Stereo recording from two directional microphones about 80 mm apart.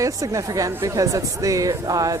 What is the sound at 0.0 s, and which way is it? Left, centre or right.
Speech, right.